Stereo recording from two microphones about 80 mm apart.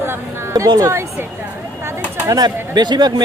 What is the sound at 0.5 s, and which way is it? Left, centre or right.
Speech, right.